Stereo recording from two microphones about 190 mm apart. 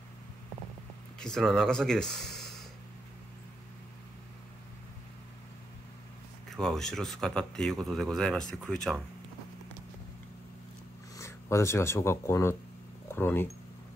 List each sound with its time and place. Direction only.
1.2 s speech: centre (ahead or behind)
6.5 s speech: centre (ahead or behind)
11.1 s speech: 15° left (ahead or behind)